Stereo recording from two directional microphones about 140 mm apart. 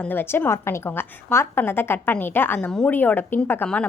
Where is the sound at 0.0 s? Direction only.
15° left (ahead or behind).